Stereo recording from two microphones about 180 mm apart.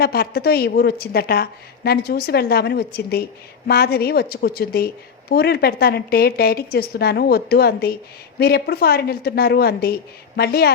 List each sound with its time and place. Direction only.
0.0 s a woman's voice: 60° left (ahead or behind)